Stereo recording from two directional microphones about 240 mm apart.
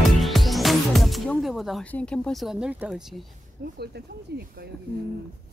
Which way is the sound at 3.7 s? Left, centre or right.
Right.